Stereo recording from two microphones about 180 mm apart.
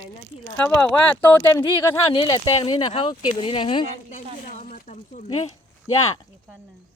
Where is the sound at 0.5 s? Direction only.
5° left (ahead or behind).